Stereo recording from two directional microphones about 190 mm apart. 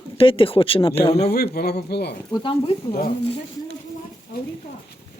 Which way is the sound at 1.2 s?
55° left (ahead or behind).